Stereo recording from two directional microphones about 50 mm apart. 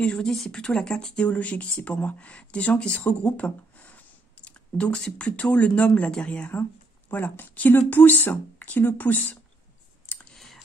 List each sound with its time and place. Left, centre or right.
0.0 s speech: centre
1.2 s speech: left
4.5 s a sound: left
5.2 s speech: left
7.1 s speech: left
10.3 s a sound: centre